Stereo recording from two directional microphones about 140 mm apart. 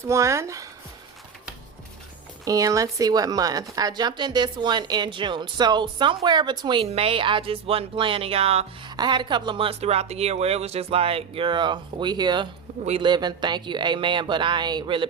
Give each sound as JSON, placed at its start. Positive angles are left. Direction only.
{"t": 0.0, "sound": "speech", "side_deg": -20}
{"t": 2.4, "sound": "speech", "side_deg": -25}
{"t": 6.8, "sound": "speech", "side_deg": -45}
{"t": 9.0, "sound": "speech", "side_deg": -35}